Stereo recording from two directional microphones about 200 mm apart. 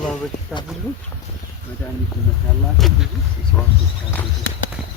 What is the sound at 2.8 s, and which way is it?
Speech, centre (ahead or behind).